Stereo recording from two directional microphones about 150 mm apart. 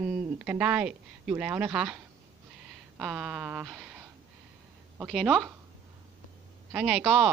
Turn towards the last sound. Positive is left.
turn(degrees=-5)  # may be behind; listen again after turning